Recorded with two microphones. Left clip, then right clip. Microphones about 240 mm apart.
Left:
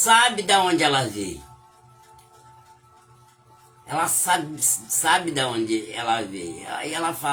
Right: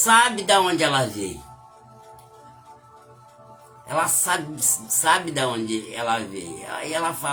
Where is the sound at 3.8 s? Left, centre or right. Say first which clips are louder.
Even; centre.